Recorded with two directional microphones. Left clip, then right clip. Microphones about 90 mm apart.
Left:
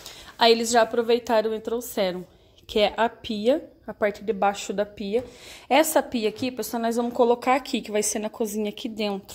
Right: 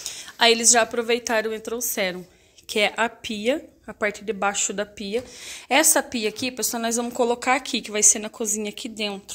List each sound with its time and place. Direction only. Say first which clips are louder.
0.0 s speech: right 1 dB; 20° left (ahead or behind)
8.7 s a woman's voice: left 1 dB; 35° left (ahead or behind)